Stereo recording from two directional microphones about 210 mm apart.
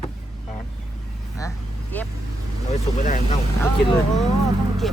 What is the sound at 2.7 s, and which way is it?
Speech, 35° left (ahead or behind).